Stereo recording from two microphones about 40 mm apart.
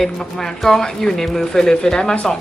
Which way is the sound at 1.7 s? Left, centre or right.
Left.